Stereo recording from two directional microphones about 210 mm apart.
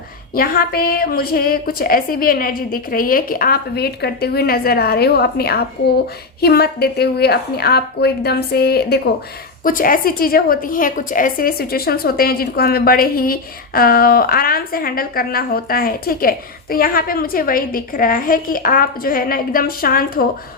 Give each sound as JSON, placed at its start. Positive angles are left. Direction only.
{"t": 0.3, "sound": "a woman's voice", "side_deg": 45}